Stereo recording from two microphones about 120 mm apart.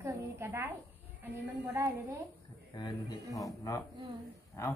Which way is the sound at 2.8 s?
40° left (ahead or behind).